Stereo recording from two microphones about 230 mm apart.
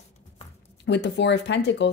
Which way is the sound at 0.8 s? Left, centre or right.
Left.